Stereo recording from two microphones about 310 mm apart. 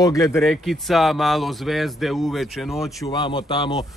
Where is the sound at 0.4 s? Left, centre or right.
Centre.